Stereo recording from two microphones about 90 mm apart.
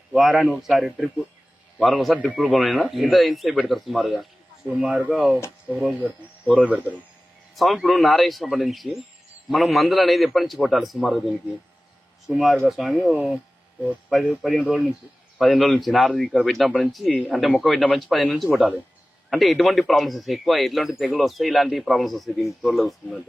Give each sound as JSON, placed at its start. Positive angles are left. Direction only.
{"t": 0.1, "sound": "speech", "side_deg": 0}
{"t": 4.7, "sound": "speech", "side_deg": -10}
{"t": 6.5, "sound": "speech", "side_deg": -15}
{"t": 7.5, "sound": "speech", "side_deg": 0}
{"t": 12.3, "sound": "speech", "side_deg": 0}